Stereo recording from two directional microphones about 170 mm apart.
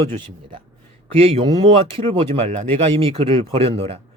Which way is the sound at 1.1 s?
35° right (ahead or behind).